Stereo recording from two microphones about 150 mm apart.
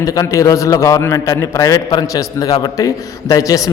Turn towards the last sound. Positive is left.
turn(degrees=25)  # may be behind; listen again after turning